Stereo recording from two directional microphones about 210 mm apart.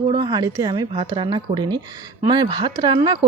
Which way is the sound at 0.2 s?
20° right (ahead or behind).